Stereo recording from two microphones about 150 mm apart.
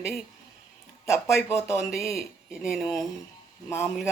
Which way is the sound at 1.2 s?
20° left (ahead or behind).